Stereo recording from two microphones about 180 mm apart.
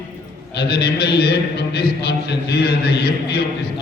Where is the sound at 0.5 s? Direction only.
65° left (ahead or behind).